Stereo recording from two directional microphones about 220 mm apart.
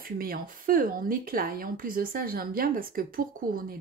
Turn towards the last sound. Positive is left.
turn(degrees=-40)  # may be behind; listen again after turning